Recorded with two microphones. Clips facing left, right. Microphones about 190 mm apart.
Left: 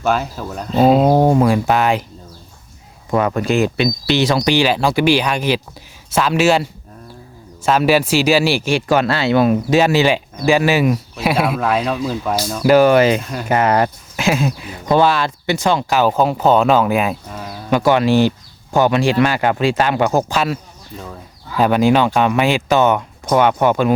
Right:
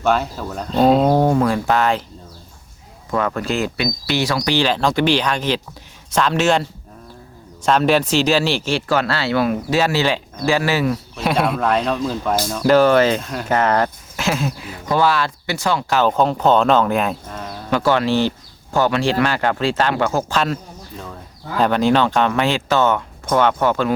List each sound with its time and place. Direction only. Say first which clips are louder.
0.0 s speech: even; 5° left (ahead or behind)
1.1 s speech: left 3 dB; 15° left (ahead or behind)
3.1 s speech: left 4 dB; 15° left (ahead or behind)
15.9 s speech: right 1 dB; 10° left (ahead or behind)
21.6 s speech: left 2 dB; 10° left (ahead or behind)